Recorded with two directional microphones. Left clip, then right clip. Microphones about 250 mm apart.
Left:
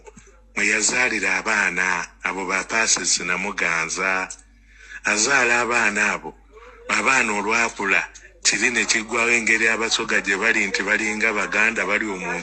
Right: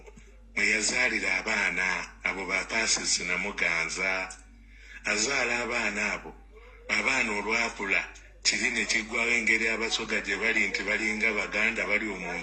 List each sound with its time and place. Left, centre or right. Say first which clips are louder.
0.5 s a man's voice: left 6 dB; left